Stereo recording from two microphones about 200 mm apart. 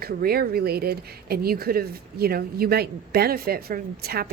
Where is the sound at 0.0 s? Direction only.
50° right (ahead or behind).